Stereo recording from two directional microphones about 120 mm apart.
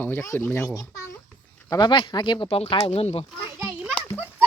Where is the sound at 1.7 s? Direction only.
40° left (ahead or behind).